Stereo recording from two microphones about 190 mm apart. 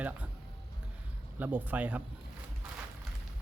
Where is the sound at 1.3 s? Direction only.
10° right (ahead or behind).